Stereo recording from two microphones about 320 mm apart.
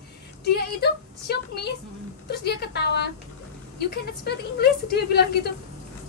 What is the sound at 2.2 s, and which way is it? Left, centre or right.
A woman's voice, left.